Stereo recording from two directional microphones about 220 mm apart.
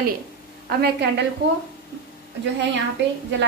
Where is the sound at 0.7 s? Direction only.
45° right (ahead or behind).